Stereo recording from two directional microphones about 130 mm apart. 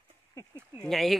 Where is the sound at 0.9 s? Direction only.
Centre (ahead or behind).